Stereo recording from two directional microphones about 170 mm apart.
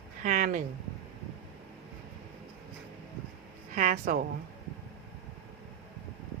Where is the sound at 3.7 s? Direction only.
40° right (ahead or behind).